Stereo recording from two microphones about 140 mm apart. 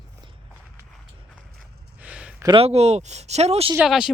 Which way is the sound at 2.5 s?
50° right (ahead or behind).